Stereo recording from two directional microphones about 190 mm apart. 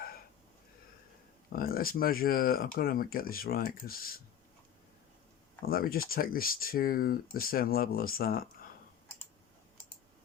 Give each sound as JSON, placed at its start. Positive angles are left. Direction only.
{"t": 1.5, "sound": "speech", "side_deg": 50}
{"t": 5.6, "sound": "speech", "side_deg": 50}